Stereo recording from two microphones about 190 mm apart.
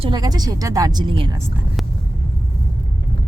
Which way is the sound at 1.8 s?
Centre (ahead or behind).